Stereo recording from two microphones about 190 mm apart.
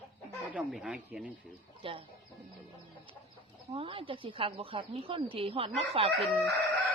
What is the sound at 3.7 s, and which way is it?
Speech, 30° right (ahead or behind).